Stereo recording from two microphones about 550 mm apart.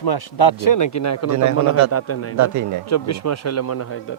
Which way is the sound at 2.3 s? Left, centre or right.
Right.